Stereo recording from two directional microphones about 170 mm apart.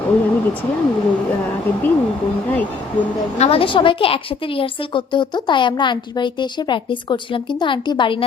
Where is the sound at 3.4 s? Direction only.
35° left (ahead or behind).